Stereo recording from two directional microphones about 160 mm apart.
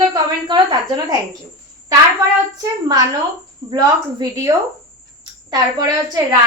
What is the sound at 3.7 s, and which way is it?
A woman's voice, 20° right (ahead or behind).